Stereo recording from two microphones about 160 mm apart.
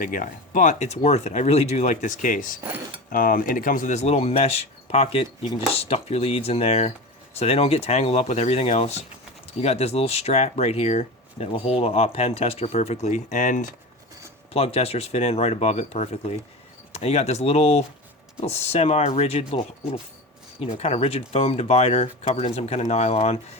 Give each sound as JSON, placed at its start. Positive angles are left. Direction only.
{"t": 0.0, "sound": "speech", "side_deg": 55}
{"t": 14.5, "sound": "speech", "side_deg": 40}